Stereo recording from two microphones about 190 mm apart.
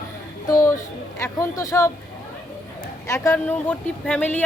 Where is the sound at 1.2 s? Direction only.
15° left (ahead or behind).